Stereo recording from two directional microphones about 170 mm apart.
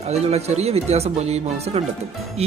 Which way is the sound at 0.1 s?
40° right (ahead or behind).